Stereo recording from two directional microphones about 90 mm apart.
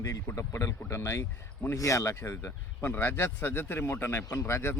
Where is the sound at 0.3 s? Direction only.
30° left (ahead or behind).